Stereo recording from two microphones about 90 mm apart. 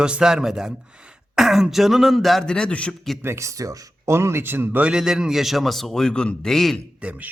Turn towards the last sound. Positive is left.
turn(degrees=-15)  # may be behind; listen again after turning